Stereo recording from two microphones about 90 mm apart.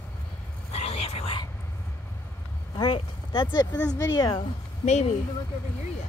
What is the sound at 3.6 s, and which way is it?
Speech, 45° left (ahead or behind).